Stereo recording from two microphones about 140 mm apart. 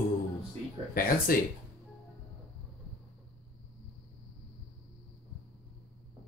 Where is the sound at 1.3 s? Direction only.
90° left.